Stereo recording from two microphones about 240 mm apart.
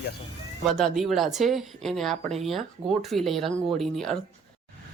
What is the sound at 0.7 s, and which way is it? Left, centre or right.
Speech, centre.